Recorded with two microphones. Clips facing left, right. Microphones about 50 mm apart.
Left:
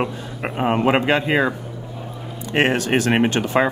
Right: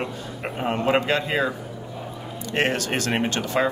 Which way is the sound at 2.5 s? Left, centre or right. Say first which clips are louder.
Left 5 dB; left.